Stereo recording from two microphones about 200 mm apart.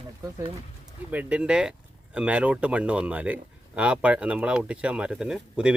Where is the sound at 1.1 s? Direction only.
5° right (ahead or behind).